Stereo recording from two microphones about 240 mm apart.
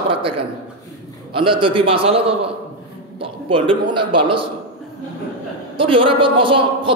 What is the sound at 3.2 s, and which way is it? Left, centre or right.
A man's voice, right.